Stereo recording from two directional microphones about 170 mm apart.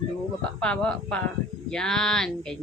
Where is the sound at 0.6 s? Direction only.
5° left (ahead or behind).